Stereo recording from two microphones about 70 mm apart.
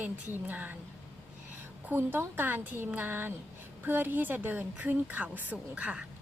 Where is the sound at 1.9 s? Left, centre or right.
Right.